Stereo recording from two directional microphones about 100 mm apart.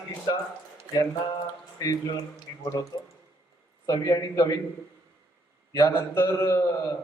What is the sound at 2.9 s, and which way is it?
A man's voice, 35° left (ahead or behind).